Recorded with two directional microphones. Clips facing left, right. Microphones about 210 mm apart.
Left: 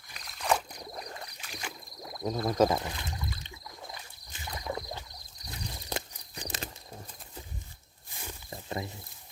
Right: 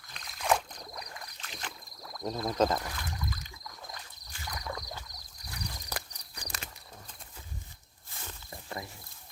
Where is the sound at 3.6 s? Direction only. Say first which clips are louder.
Left 1 dB; 10° left (ahead or behind).